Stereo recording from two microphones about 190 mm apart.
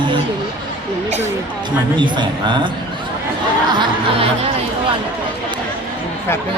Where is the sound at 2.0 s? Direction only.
25° right (ahead or behind).